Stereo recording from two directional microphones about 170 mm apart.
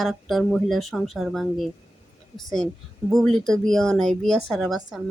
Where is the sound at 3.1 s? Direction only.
Centre (ahead or behind).